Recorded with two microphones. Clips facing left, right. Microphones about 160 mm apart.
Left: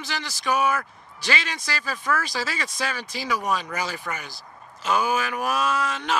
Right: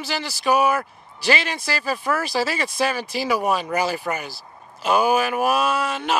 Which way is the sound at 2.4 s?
35° right (ahead or behind).